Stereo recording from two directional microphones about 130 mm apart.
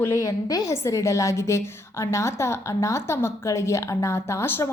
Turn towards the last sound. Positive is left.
turn(degrees=20)  # may be behind; listen again after turning